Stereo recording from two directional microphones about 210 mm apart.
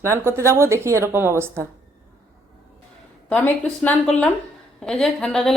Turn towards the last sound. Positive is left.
turn(degrees=0)  # may be behind; listen again after turning